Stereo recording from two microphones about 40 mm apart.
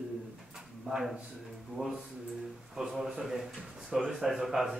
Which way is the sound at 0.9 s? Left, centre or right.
Centre.